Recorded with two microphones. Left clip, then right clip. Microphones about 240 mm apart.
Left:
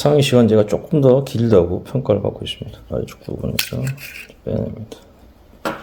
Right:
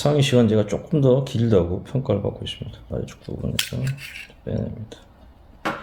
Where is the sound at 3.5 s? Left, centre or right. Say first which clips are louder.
Left 1 dB; centre.